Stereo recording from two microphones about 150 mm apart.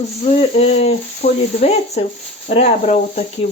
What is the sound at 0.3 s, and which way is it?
Speech, 45° left (ahead or behind).